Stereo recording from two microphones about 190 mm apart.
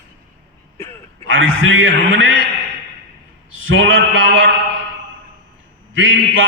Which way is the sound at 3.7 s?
85° right.